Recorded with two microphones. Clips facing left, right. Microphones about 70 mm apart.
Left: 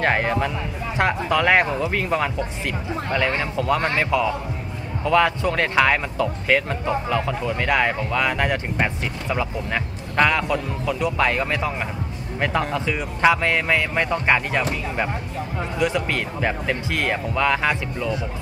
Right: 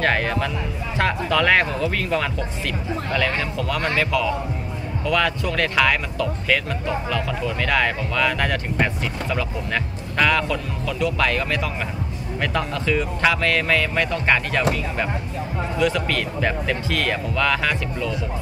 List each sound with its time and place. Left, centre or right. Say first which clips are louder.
0.0 s speech: left 1 dB; centre